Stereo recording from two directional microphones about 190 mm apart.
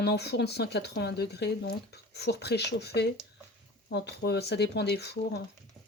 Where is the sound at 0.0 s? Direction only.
60° left (ahead or behind).